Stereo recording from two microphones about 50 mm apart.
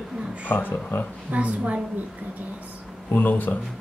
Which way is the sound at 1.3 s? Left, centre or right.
Right.